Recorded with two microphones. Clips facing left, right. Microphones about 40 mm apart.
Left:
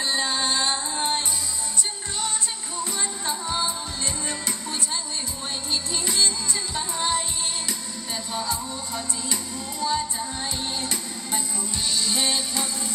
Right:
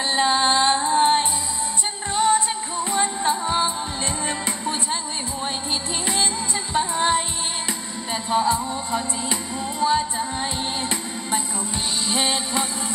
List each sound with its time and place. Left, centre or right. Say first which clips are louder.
0.0 s music: right 6 dB; right
6.0 s music: right 1 dB; right